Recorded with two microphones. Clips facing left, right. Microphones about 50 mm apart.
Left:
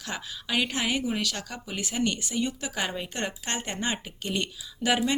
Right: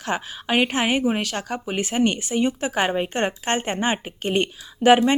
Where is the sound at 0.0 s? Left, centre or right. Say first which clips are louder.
Right 9 dB; right.